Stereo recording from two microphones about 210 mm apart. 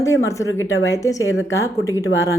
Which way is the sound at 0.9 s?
15° left (ahead or behind).